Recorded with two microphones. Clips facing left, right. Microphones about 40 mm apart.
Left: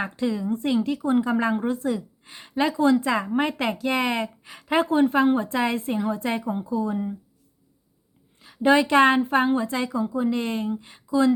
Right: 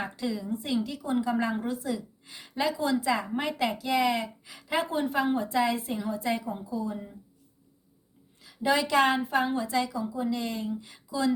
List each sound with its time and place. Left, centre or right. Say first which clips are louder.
0.0 s speech: left 6 dB; left
8.4 s speech: left 7 dB; left
10.8 s speech: left 9 dB; left